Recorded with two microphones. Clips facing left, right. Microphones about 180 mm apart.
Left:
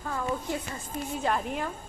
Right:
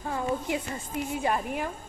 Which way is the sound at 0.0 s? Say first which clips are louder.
Right 2 dB; 25° right (ahead or behind).